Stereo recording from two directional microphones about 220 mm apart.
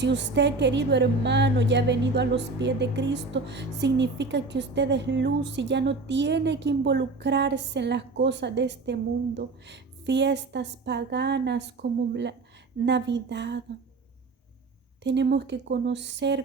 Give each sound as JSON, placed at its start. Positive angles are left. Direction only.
{"t": 0.0, "sound": "a woman's voice", "side_deg": -50}
{"t": 15.0, "sound": "a woman's voice", "side_deg": -50}